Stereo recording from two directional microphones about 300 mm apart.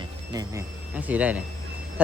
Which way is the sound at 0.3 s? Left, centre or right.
Centre.